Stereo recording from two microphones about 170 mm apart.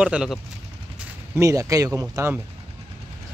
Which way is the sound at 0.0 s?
5° right (ahead or behind).